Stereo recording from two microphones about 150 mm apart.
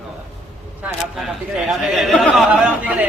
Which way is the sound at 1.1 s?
5° right (ahead or behind).